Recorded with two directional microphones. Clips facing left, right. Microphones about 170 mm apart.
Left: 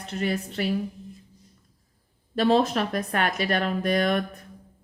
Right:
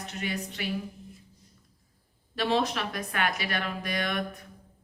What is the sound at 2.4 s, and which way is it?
Speech, 50° left (ahead or behind).